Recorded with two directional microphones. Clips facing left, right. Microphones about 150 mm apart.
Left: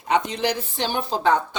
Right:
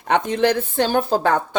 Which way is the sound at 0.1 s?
55° right (ahead or behind).